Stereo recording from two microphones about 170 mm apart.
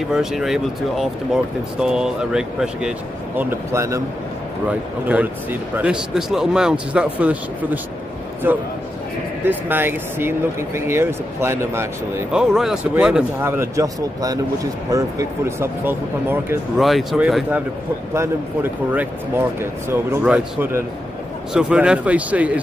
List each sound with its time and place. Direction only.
0.1 s speech: 5° right (ahead or behind)
3.3 s speech: 15° right (ahead or behind)
12.3 s speech: 5° right (ahead or behind)
16.7 s speech: centre (ahead or behind)